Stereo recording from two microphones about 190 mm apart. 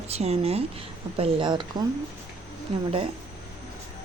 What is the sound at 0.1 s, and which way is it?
Speech, 35° right (ahead or behind).